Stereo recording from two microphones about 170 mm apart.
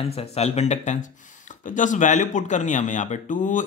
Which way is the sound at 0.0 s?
40° left (ahead or behind).